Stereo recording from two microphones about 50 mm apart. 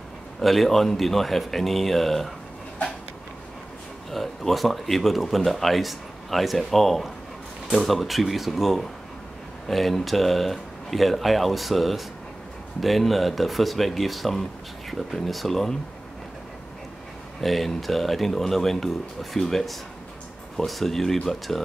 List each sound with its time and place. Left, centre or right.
0.4 s speech: centre
4.1 s speech: centre
17.4 s speech: centre